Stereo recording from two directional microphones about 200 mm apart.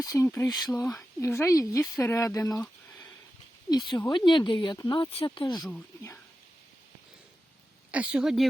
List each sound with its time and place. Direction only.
0.0 s speech: 15° left (ahead or behind)
3.7 s speech: 20° left (ahead or behind)
7.9 s speech: 5° right (ahead or behind)